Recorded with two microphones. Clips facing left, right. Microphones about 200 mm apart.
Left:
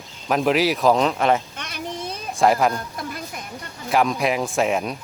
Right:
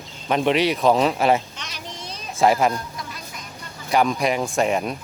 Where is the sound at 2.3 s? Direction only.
Centre (ahead or behind).